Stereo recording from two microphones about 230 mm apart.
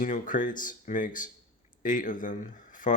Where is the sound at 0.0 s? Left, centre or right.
Left.